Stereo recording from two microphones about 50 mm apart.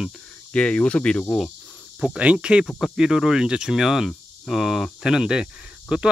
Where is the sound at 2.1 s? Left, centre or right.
Right.